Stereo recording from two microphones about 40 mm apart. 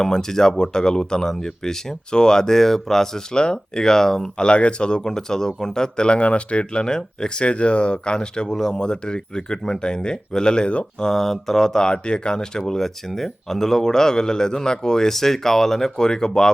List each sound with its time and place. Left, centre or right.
0.0 s speech: centre
4.4 s speech: left
6.8 s speech: centre
8.8 s speech: left
11.0 s speech: centre